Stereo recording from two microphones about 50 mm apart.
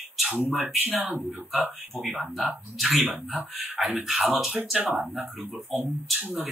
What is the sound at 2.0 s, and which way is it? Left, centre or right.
Speech, right.